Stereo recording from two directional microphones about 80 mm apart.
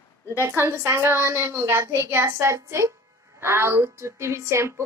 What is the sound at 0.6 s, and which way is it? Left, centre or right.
A woman's voice, right.